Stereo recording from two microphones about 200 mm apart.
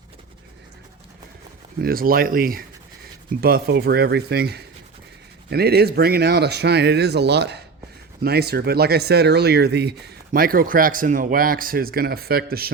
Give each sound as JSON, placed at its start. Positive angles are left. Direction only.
{"t": 1.8, "sound": "speech", "side_deg": -45}